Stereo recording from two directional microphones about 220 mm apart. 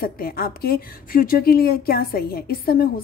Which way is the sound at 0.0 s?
45° left (ahead or behind).